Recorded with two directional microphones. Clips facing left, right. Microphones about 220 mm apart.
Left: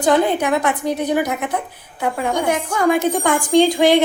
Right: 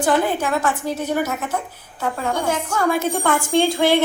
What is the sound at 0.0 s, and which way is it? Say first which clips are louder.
A woman's voice: left 3 dB; 20° left (ahead or behind).